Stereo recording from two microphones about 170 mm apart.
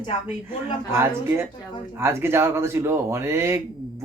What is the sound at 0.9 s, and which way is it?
Speech, 15° right (ahead or behind).